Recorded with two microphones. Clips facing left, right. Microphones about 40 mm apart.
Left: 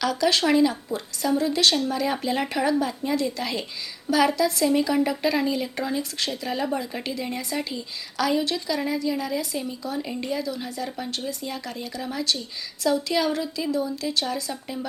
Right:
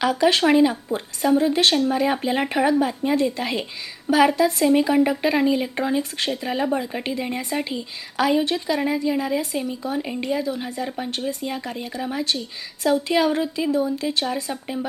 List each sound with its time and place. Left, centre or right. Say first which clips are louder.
0.0 s a woman's voice: right 4 dB; right
10.1 s a woman's voice: right 4 dB; centre
10.3 s a woman's voice: right 5 dB; right